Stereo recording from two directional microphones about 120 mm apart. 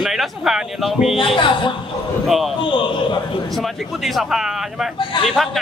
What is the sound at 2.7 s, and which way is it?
Speech, 45° left (ahead or behind).